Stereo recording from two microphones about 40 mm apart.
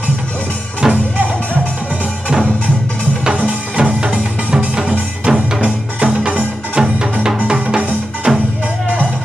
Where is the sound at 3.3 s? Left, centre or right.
Right.